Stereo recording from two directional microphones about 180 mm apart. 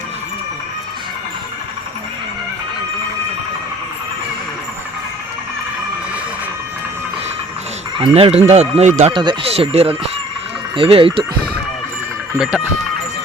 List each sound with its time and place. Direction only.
7.9 s speech: 30° right (ahead or behind)
9.1 s speech: 30° right (ahead or behind)
12.4 s speech: 5° right (ahead or behind)